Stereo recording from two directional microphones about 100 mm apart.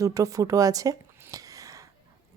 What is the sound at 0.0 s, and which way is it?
Speech, 35° right (ahead or behind).